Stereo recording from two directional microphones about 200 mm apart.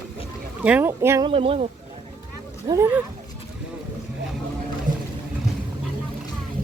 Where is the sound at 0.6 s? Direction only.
10° right (ahead or behind).